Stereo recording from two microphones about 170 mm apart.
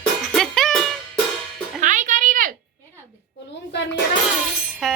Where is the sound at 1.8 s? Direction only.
50° right (ahead or behind).